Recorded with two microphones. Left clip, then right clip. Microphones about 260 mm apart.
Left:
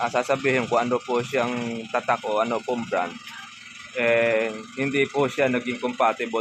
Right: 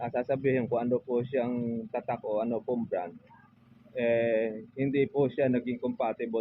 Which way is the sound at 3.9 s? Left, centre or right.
Centre.